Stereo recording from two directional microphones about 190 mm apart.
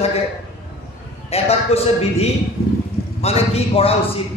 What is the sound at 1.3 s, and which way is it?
A man's voice, 30° left (ahead or behind).